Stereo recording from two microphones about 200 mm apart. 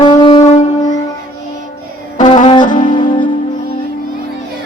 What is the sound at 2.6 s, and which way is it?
Music, 40° left (ahead or behind).